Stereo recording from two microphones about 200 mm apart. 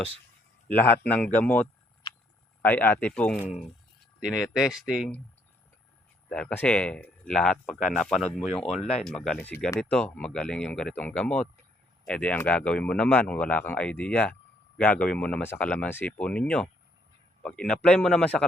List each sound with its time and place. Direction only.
0.7 s speech: 10° left (ahead or behind)
2.0 s a sound: 25° left (ahead or behind)
2.6 s speech: 10° left (ahead or behind)
6.3 s speech: 5° left (ahead or behind)